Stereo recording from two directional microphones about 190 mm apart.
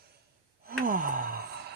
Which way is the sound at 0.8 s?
45° right (ahead or behind).